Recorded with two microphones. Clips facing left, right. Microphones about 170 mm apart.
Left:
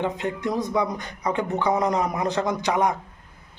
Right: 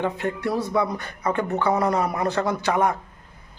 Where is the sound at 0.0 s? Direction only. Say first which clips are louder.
Right 1 dB; 15° left (ahead or behind).